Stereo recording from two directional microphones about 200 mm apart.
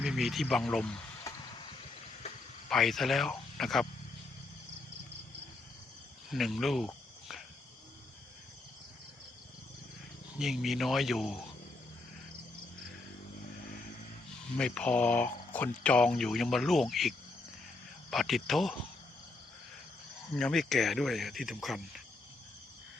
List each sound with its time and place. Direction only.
0.0 s speech: centre (ahead or behind)
2.6 s speech: centre (ahead or behind)
6.3 s speech: centre (ahead or behind)
10.3 s speech: centre (ahead or behind)
14.5 s speech: 5° left (ahead or behind)
20.3 s speech: centre (ahead or behind)